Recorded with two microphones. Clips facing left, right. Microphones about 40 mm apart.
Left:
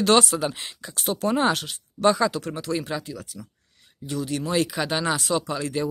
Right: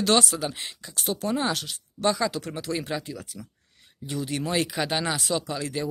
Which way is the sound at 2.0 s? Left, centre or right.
Centre.